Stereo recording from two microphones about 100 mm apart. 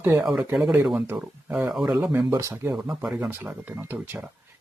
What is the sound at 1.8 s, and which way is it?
Speech, 45° right (ahead or behind).